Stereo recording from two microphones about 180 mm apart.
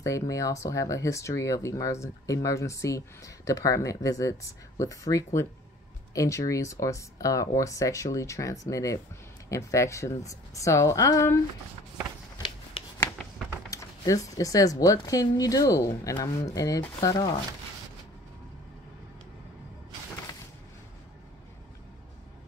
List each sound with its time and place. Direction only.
0.0 s speech: 15° left (ahead or behind)
12.4 s rub: 25° left (ahead or behind)
13.0 s speech: 15° left (ahead or behind)